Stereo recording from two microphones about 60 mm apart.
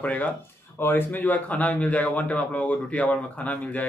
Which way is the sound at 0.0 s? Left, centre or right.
Left.